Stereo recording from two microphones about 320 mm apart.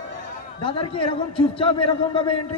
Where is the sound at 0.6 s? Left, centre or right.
Centre.